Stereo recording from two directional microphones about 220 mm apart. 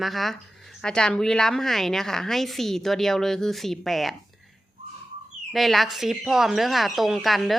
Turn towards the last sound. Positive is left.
turn(degrees=0)  # may be behind; listen again after turning